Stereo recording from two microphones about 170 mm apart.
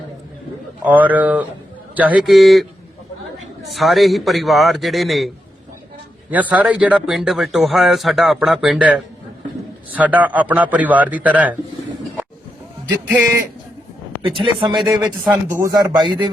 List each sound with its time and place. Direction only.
0.9 s a man's voice: 10° right (ahead or behind)
3.8 s speech: centre (ahead or behind)
6.3 s a man's voice: 10° right (ahead or behind)
13.1 s a man's voice: 10° right (ahead or behind)
14.4 s speech: 30° right (ahead or behind)
14.8 s a man's voice: 10° right (ahead or behind); by 16.3 s 25° right (ahead or behind)